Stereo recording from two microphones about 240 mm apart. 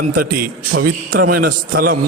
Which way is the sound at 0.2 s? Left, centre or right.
Right.